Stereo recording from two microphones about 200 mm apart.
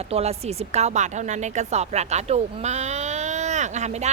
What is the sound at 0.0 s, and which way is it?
A woman's voice, 30° right (ahead or behind).